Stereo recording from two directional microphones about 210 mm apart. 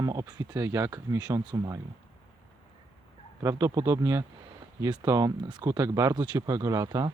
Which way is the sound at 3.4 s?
15° right (ahead or behind).